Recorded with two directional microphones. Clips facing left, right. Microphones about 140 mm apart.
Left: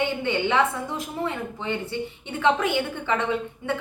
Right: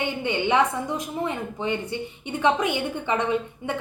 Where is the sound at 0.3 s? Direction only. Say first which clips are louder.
Right 2 dB; 15° right (ahead or behind).